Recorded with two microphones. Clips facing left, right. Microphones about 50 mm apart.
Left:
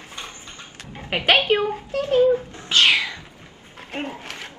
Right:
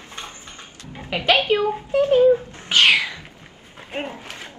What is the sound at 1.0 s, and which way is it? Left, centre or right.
Speech, left.